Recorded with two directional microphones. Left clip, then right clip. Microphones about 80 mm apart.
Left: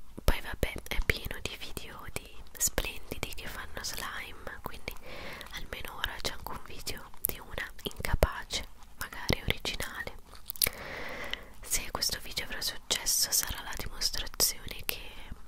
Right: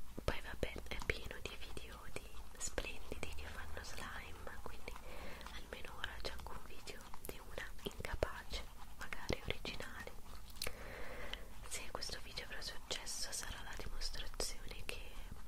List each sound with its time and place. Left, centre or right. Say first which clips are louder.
0.2 s whispering: left 9 dB; left